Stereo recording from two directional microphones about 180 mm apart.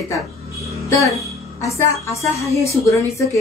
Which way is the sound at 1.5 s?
15° left (ahead or behind).